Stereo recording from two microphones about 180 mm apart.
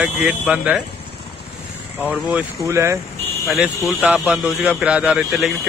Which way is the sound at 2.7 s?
15° right (ahead or behind).